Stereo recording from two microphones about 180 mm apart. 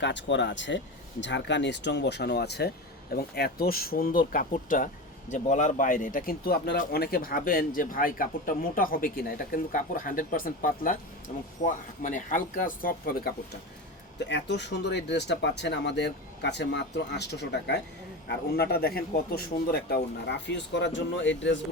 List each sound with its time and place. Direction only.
0.0 s speech: 85° left; by 13.3 s 55° left (ahead or behind)
14.3 s speech: 75° left (ahead or behind); by 20.0 s 60° left (ahead or behind)
20.2 s speech: 75° left (ahead or behind); by 21.6 s 90° left